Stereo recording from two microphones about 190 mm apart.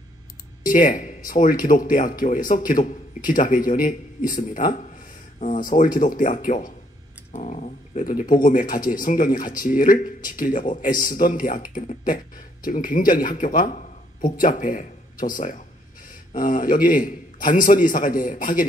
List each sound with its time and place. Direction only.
0.7 s a man's voice: 45° left (ahead or behind)